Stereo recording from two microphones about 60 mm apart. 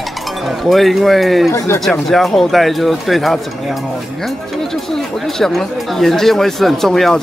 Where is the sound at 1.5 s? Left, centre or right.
Left.